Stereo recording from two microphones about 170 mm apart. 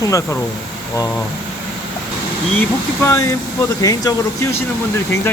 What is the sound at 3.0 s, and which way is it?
Speech, 20° left (ahead or behind).